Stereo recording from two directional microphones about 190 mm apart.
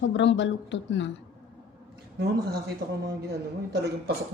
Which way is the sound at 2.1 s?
55° right (ahead or behind).